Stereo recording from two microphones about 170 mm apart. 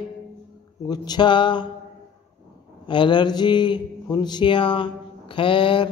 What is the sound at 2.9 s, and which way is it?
Mantra, 30° left (ahead or behind).